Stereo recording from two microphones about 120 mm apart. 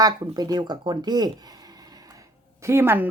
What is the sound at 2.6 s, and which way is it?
Speech, 20° right (ahead or behind).